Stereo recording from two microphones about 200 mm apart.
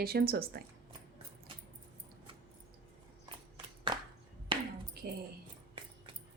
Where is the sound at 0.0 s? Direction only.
50° right (ahead or behind).